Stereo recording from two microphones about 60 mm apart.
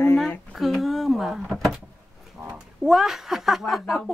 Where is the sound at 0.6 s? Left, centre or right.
Centre.